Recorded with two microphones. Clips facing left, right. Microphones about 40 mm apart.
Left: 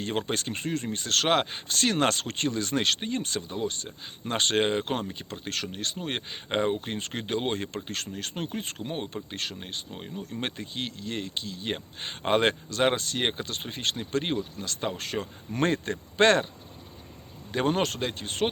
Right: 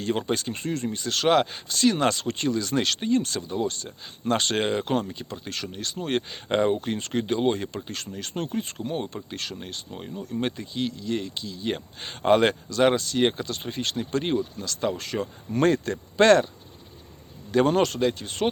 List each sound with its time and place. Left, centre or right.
0.0 s speech: left
6.0 s speech: left
6.7 s speech: left
10.4 s speech: left
11.7 s speech: left
13.0 s speech: left
17.7 s speech: left